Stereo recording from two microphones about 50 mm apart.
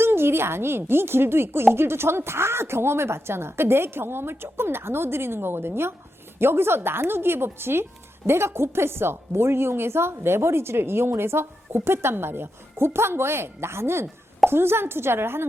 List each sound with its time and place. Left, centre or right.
0.0 s a woman's voice: right